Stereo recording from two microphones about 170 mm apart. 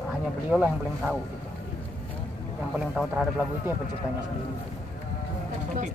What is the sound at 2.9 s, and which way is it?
Speech, 5° right (ahead or behind).